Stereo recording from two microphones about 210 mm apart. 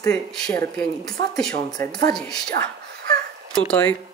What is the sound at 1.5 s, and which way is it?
Speech, 20° left (ahead or behind).